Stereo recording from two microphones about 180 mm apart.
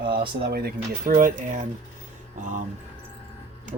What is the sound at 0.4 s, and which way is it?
A man's voice, 60° right (ahead or behind).